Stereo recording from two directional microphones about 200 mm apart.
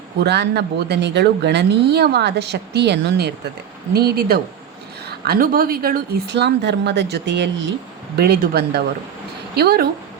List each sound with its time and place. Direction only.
0.2 s a woman's voice: 55° right (ahead or behind)